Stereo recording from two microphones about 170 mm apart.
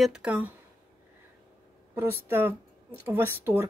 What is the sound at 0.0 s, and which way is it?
Speech, 5° right (ahead or behind).